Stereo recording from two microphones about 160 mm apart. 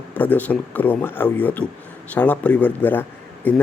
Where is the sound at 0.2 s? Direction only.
10° left (ahead or behind).